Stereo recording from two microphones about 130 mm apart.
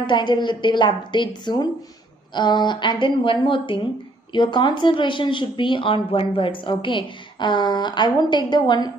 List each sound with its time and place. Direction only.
0.0 s speech: 40° left (ahead or behind)